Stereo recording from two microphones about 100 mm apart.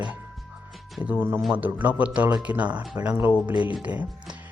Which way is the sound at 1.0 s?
20° right (ahead or behind).